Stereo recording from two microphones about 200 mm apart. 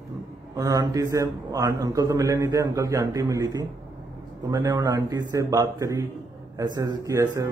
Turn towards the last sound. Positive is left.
turn(degrees=-15)  # may be behind; listen again after turning